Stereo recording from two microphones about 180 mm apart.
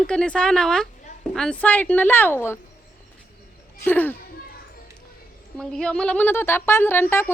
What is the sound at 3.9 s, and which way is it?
Speech, 10° left (ahead or behind).